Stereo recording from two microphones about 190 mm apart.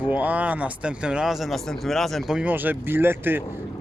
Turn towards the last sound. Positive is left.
turn(degrees=-10)  # may be behind; listen again after turning